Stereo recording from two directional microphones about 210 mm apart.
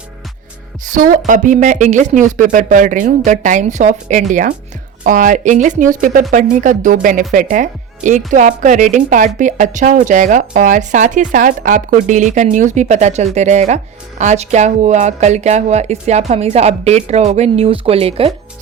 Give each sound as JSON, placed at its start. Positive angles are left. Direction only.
{"t": 0.9, "sound": "speech", "side_deg": -40}